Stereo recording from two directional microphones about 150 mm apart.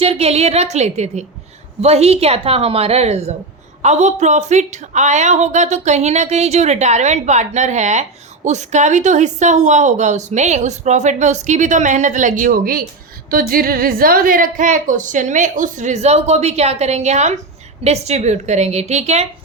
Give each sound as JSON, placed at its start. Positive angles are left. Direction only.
{"t": 0.0, "sound": "a woman's voice", "side_deg": -40}